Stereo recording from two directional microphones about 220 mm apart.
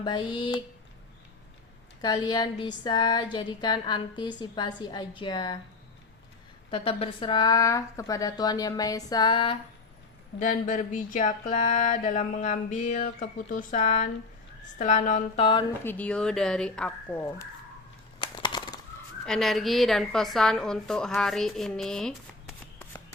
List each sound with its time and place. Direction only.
0.0 s a woman's voice: 20° left (ahead or behind)
2.0 s a woman's voice: 20° left (ahead or behind)
6.7 s speech: 25° left (ahead or behind)
10.4 s a sound: 35° left (ahead or behind)
15.8 s a woman's voice: 10° left (ahead or behind)
18.2 s a sound: 20° left (ahead or behind)
19.2 s a woman's voice: centre (ahead or behind)